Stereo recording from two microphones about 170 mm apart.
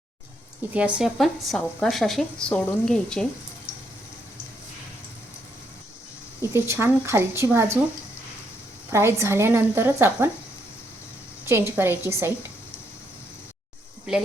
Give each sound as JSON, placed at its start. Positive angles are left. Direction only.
{"t": 0.7, "sound": "speech", "side_deg": -5}
{"t": 6.4, "sound": "speech", "side_deg": -15}
{"t": 8.9, "sound": "speech", "side_deg": -15}
{"t": 11.4, "sound": "speech", "side_deg": -15}
{"t": 14.1, "sound": "speech", "side_deg": -5}